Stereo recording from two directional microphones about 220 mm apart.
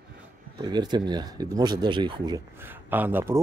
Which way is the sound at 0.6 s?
20° right (ahead or behind).